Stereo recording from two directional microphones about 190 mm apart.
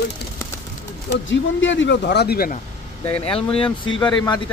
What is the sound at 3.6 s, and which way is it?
Speech, 25° left (ahead or behind).